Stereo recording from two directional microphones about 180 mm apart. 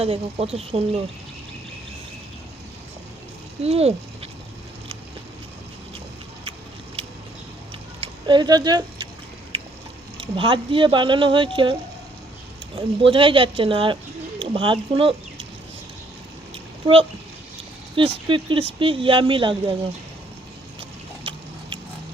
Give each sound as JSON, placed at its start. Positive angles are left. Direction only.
{"t": 0.0, "sound": "a woman's voice", "side_deg": -35}
{"t": 3.6, "sound": "speech", "side_deg": -35}
{"t": 7.0, "sound": "a sound", "side_deg": -30}
{"t": 8.0, "sound": "speech", "side_deg": -25}
{"t": 10.3, "sound": "speech", "side_deg": -30}
{"t": 17.9, "sound": "speech", "side_deg": -30}